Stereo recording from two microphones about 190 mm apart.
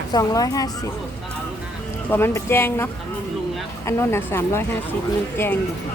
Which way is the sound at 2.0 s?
10° left (ahead or behind).